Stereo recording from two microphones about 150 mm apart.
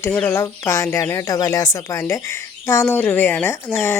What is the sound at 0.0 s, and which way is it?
Speech, 10° left (ahead or behind).